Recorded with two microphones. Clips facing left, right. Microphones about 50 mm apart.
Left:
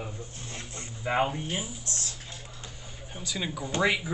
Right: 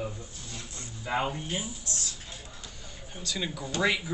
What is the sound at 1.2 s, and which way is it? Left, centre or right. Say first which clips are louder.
Speech: left 2 dB; centre.